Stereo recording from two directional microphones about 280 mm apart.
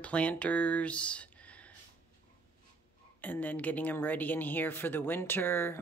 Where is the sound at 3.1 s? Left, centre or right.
Centre.